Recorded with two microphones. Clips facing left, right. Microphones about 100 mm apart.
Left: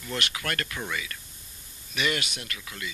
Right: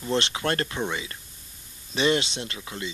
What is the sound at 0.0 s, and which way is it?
Speech, 30° right (ahead or behind).